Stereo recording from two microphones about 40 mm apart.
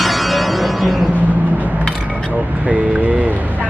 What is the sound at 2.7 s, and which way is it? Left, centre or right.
Vehicle, right.